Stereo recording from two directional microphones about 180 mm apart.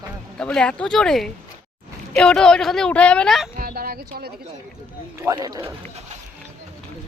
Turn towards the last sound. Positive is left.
turn(degrees=-20)  # may be behind; listen again after turning